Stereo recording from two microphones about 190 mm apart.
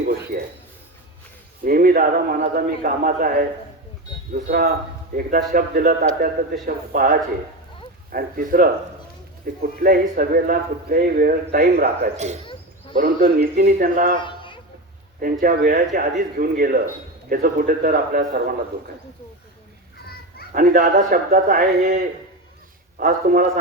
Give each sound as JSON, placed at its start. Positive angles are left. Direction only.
{"t": 0.3, "sound": "a sound", "side_deg": -45}
{"t": 1.6, "sound": "a man's voice", "side_deg": -50}
{"t": 12.1, "sound": "speech", "side_deg": -35}
{"t": 13.0, "sound": "a man's voice", "side_deg": -45}
{"t": 14.2, "sound": "a sound", "side_deg": 25}
{"t": 15.2, "sound": "a man's voice", "side_deg": -45}
{"t": 20.5, "sound": "a man's voice", "side_deg": -45}